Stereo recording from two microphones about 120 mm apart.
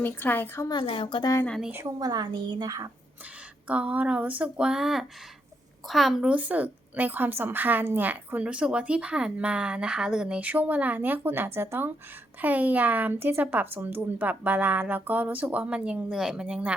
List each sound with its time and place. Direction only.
0.0 s a woman's voice: 15° left (ahead or behind)
0.7 s a woman's voice: 50° left (ahead or behind)
1.5 s a woman's voice: centre (ahead or behind)
1.7 s a woman's voice: 20° right (ahead or behind)
2.0 s a woman's voice: 30° right (ahead or behind)
2.6 s a woman's voice: 30° right (ahead or behind)
3.7 s a woman's voice: 10° right (ahead or behind)